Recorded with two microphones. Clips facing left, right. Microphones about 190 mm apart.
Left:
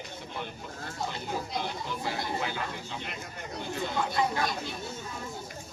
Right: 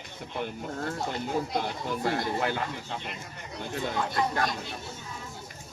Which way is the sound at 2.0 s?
55° right (ahead or behind).